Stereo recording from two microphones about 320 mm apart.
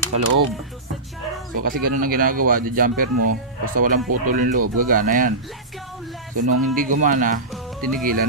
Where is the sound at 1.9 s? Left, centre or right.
Right.